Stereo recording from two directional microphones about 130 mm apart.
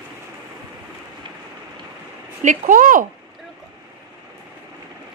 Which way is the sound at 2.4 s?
85° right.